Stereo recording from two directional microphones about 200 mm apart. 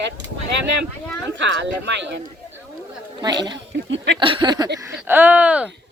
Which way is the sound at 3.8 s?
65° right (ahead or behind).